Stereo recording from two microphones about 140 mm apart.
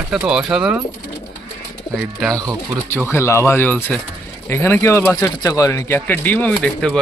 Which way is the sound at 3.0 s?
20° left (ahead or behind).